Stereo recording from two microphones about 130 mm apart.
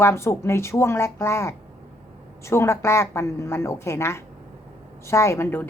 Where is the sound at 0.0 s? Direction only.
20° left (ahead or behind).